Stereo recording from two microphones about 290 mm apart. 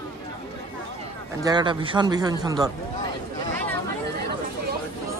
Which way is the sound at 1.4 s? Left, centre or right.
Centre.